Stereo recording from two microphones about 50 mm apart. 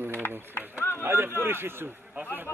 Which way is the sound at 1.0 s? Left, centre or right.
Right.